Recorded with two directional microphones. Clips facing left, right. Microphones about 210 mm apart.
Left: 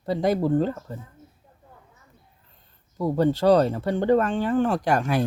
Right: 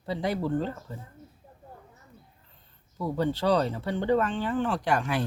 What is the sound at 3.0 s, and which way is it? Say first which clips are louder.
Speech: left 6 dB; 45° left (ahead or behind).